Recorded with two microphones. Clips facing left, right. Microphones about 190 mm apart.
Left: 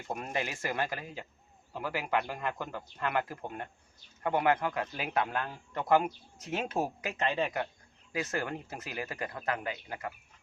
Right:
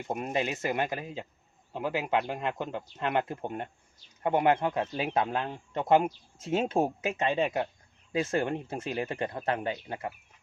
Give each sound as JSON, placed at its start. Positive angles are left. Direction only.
{"t": 0.1, "sound": "speech", "side_deg": -20}